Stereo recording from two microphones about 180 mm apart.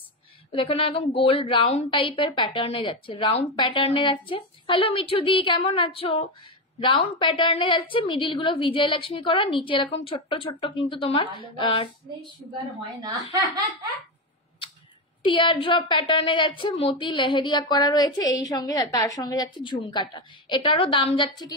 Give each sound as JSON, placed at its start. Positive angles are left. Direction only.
{"t": 0.5, "sound": "a woman's voice", "side_deg": 30}
{"t": 13.0, "sound": "speech", "side_deg": -20}
{"t": 15.2, "sound": "a woman's voice", "side_deg": 30}